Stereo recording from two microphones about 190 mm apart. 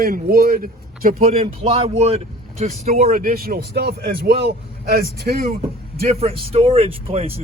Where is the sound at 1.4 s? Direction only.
30° right (ahead or behind); by 5.5 s 55° right (ahead or behind).